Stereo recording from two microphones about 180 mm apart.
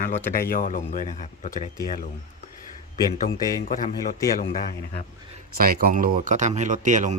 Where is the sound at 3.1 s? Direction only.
50° left (ahead or behind).